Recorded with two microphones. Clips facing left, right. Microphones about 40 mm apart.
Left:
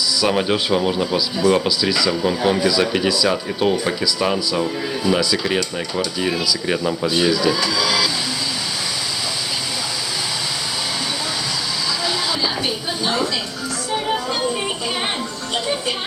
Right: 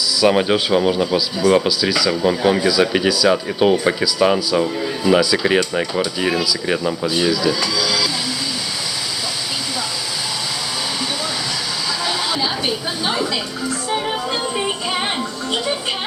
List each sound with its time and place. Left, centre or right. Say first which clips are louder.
0.2 s speech: right 4 dB; centre
4.6 s speech: right 2 dB; centre
6.4 s speech: right 1 dB; centre
7.8 s vehicle: left 1 dB; centre
12.4 s chatter: right 1 dB; centre